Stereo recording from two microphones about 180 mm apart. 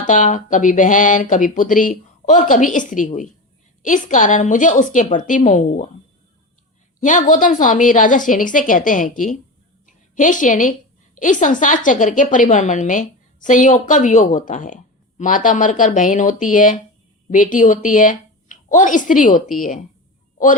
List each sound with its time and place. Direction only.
0.0 s a woman's voice: 45° left (ahead or behind)
7.0 s a woman's voice: 45° left (ahead or behind)
9.8 s a sound: 45° left (ahead or behind)
11.2 s a woman's voice: 45° left (ahead or behind)